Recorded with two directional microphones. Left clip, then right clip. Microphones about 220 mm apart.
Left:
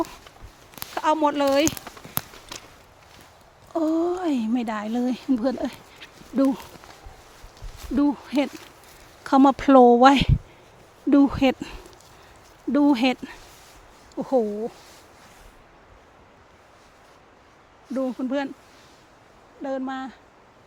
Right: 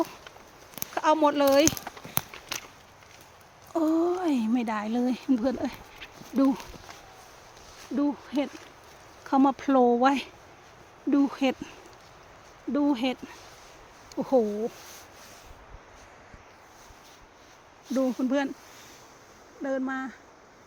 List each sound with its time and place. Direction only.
0.9 s speech: 15° left (ahead or behind)
3.7 s speech: centre (ahead or behind)
7.9 s speech: 45° left (ahead or behind)
9.2 s speech: 30° left (ahead or behind)
12.7 s speech: 40° left (ahead or behind)
14.2 s speech: 15° left (ahead or behind)
17.9 s speech: centre (ahead or behind)
19.6 s speech: 5° left (ahead or behind)